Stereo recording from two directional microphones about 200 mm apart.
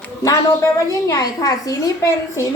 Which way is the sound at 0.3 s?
15° left (ahead or behind).